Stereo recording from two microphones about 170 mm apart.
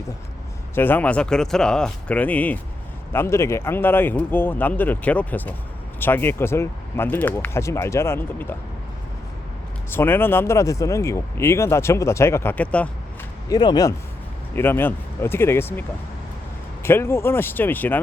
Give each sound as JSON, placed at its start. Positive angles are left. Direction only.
{"t": 0.8, "sound": "speech", "side_deg": 10}
{"t": 9.9, "sound": "speech", "side_deg": 15}
{"t": 13.5, "sound": "speech", "side_deg": 25}
{"t": 14.5, "sound": "speech", "side_deg": 10}
{"t": 16.8, "sound": "speech", "side_deg": 15}